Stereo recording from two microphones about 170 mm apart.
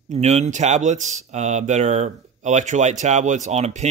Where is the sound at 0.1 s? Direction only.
40° right (ahead or behind).